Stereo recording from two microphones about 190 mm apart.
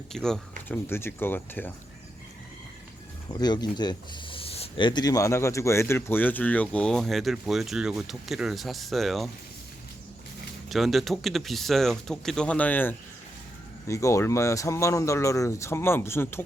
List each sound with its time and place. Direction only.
0.1 s speech: 5° left (ahead or behind)
3.4 s speech: 20° left (ahead or behind); by 9.3 s centre (ahead or behind)
10.7 s speech: centre (ahead or behind)